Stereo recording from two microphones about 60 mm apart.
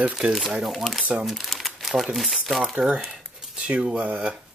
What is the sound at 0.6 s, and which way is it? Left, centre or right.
Speech, centre.